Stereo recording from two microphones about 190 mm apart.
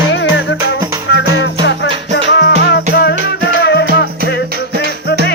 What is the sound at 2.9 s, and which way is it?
Music, 55° left (ahead or behind).